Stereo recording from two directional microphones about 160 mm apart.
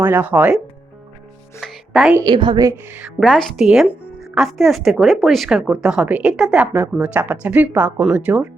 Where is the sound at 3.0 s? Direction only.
Centre (ahead or behind).